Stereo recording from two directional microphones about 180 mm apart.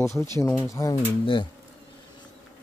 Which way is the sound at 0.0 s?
15° left (ahead or behind).